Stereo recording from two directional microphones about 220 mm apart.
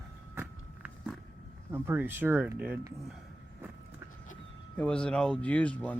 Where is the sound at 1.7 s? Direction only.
10° right (ahead or behind).